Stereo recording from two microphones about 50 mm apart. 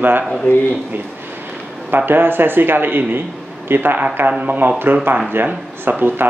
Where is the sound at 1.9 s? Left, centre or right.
Right.